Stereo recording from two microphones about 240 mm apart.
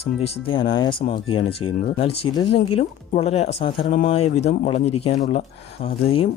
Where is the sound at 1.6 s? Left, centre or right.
Left.